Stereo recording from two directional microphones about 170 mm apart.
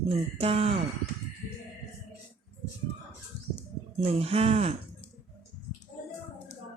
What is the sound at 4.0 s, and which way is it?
Speech, 35° right (ahead or behind).